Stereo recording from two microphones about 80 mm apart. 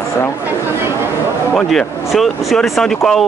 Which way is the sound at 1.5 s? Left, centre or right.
Centre.